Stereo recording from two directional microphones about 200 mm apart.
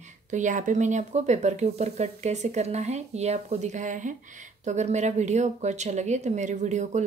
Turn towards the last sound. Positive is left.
turn(degrees=-35)  # may be behind; listen again after turning